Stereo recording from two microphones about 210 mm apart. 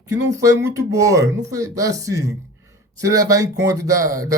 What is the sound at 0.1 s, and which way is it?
Speech, 15° right (ahead or behind).